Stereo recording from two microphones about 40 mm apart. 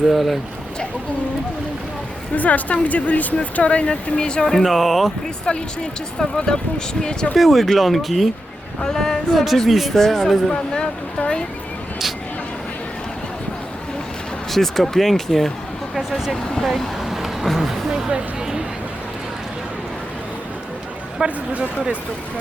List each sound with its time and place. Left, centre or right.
0.1 s speech: centre
2.3 s speech: left; by 4.6 s centre
4.6 s speech: centre
5.5 s speech: left
7.3 s speech: centre
8.8 s speech: centre
9.6 s speech: centre
9.9 s speech: centre
10.7 s speech: left
14.5 s speech: centre
16.0 s a sound: centre
16.6 s vehicle: centre
21.2 s speech: right